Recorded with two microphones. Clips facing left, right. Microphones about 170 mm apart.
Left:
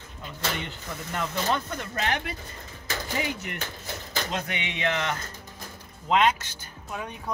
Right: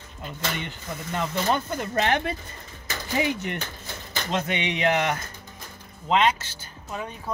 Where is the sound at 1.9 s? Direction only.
30° right (ahead or behind).